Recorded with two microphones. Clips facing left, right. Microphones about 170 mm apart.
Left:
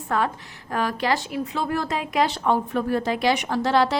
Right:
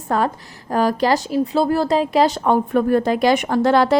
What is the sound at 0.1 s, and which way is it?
A woman's voice, 35° right (ahead or behind).